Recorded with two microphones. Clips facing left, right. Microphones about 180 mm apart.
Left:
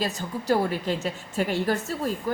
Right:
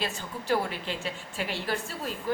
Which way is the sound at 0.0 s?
40° left (ahead or behind).